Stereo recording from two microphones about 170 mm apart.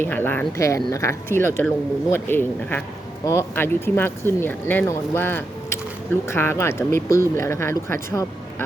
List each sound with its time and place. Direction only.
0.0 s speech: 10° left (ahead or behind)